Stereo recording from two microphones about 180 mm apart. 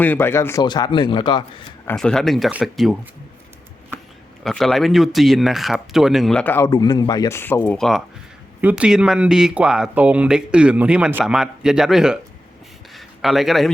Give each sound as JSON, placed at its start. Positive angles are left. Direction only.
{"t": 0.0, "sound": "speech", "side_deg": 10}
{"t": 2.0, "sound": "speech", "side_deg": 5}
{"t": 4.4, "sound": "speech", "side_deg": 0}
{"t": 6.7, "sound": "speech", "side_deg": 25}